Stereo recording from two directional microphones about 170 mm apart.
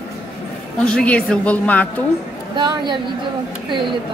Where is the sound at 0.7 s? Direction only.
5° left (ahead or behind).